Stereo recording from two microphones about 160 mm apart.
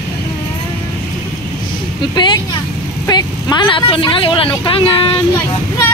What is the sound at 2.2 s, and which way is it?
A woman's voice, 30° left (ahead or behind).